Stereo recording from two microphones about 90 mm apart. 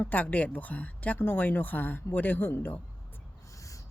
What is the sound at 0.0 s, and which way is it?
Speech, 20° left (ahead or behind).